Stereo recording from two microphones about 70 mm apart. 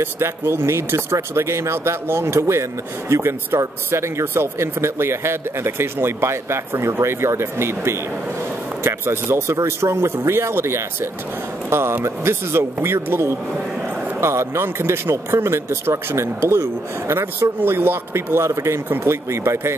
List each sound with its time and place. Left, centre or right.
0.0 s speech: right